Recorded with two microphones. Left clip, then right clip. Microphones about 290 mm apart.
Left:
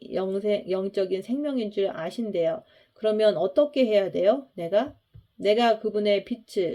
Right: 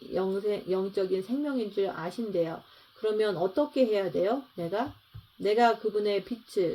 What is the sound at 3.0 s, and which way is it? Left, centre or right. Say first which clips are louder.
Speech: left 6 dB; left.